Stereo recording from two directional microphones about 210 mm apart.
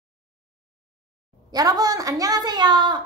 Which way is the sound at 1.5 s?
15° right (ahead or behind).